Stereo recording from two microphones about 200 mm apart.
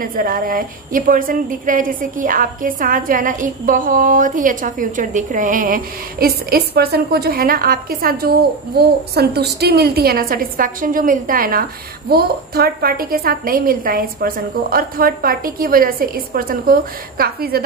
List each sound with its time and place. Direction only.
0.0 s a woman's voice: 45° right (ahead or behind)